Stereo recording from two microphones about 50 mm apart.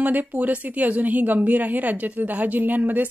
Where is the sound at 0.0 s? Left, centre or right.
Right.